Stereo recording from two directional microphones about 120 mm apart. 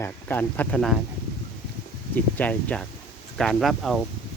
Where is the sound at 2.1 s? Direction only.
15° left (ahead or behind).